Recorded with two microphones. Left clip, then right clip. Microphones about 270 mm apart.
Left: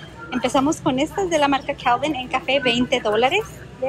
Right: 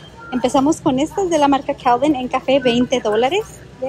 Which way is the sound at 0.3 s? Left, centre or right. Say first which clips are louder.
Right 4 dB; centre.